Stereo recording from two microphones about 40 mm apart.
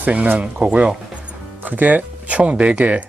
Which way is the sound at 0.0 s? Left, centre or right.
Right.